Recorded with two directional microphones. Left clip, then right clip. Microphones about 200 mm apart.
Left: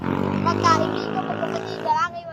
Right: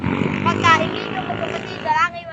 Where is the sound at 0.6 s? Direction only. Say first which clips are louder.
Right 4 dB; 15° right (ahead or behind).